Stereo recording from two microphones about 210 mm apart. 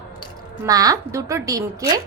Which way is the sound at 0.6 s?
15° right (ahead or behind).